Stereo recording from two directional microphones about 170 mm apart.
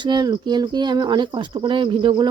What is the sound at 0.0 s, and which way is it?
Speech, 25° right (ahead or behind).